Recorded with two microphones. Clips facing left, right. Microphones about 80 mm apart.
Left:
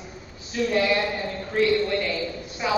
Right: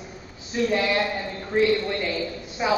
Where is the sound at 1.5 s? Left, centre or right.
Centre.